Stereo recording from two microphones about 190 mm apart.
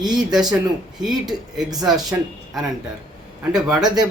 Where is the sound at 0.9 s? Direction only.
Centre (ahead or behind).